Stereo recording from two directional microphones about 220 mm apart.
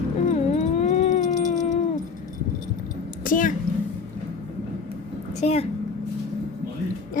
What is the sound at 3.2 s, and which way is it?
Speech, 35° left (ahead or behind).